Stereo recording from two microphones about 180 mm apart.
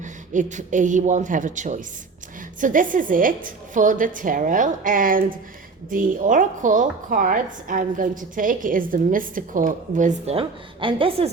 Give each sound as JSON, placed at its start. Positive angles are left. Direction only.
{"t": 0.0, "sound": "a woman's voice", "side_deg": -45}